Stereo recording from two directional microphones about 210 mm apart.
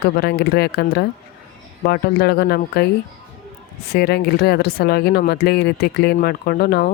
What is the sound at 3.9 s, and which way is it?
Speech, 50° left (ahead or behind).